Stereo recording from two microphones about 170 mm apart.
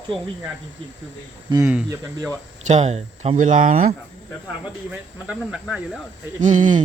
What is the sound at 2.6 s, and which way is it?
Speech, 40° right (ahead or behind).